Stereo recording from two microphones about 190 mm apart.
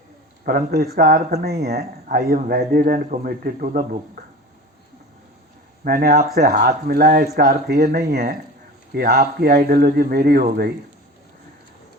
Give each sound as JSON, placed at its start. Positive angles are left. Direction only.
{"t": 0.4, "sound": "speech", "side_deg": -55}
{"t": 5.8, "sound": "speech", "side_deg": -55}